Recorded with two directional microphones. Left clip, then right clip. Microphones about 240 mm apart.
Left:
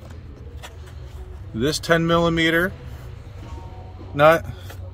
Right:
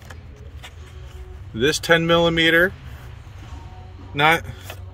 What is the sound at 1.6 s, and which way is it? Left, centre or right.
Speech, centre.